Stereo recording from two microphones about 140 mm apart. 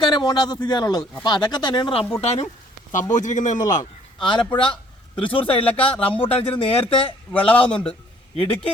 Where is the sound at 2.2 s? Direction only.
50° left (ahead or behind).